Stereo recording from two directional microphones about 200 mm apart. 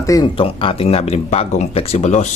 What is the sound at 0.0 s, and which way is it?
Speech, 20° left (ahead or behind).